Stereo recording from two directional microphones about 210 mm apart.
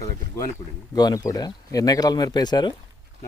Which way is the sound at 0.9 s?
20° left (ahead or behind).